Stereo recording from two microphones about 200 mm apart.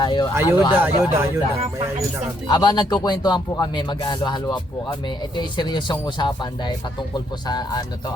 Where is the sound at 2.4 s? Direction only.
20° left (ahead or behind).